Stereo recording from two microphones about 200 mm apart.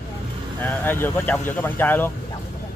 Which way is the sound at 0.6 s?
10° left (ahead or behind).